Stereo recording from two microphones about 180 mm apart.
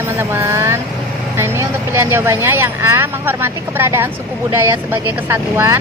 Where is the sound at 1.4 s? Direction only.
15° right (ahead or behind).